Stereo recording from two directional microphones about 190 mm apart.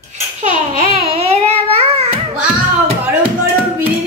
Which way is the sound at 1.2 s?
35° right (ahead or behind).